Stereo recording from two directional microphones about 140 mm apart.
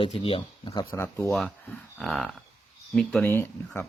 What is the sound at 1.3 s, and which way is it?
Speech, 5° left (ahead or behind).